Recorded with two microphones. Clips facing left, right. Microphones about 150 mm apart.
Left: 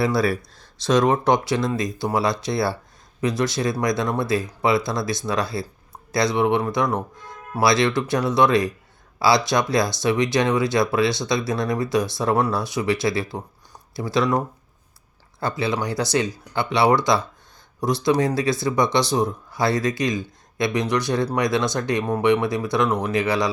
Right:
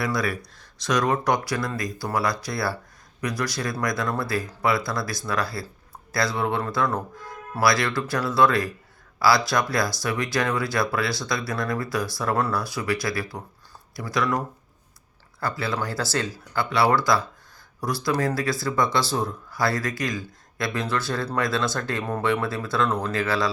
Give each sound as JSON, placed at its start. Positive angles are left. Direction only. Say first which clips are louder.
{"t": 0.0, "sound": "speech", "louder": "left 6 dB", "side_deg": 30}